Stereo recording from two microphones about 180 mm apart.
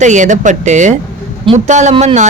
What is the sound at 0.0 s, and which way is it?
Speech, 40° right (ahead or behind).